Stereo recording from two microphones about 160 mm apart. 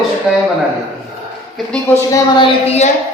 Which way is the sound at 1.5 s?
5° left (ahead or behind).